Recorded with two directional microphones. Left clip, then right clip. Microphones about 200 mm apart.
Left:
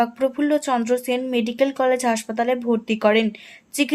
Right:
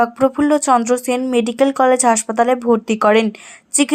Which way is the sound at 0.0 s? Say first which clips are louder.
Right 6 dB; 15° right (ahead or behind).